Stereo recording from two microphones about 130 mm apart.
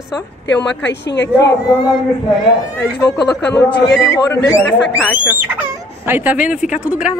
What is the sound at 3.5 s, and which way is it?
A woman's voice, 25° left (ahead or behind).